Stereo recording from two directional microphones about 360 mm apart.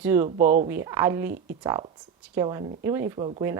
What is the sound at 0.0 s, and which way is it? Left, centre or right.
Speech, centre.